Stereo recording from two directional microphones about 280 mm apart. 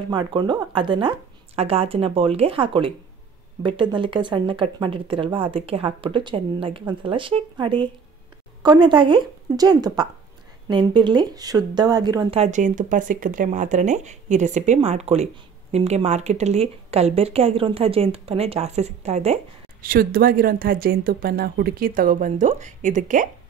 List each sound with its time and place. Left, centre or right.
0.1 s speech: centre